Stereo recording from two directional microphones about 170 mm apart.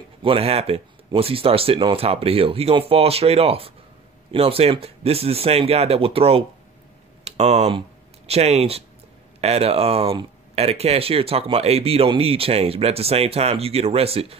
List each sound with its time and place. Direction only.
0.2 s speech: 35° right (ahead or behind)